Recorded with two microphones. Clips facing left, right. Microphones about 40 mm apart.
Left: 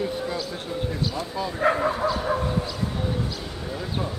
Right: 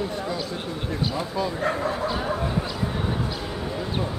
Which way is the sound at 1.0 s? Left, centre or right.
Centre.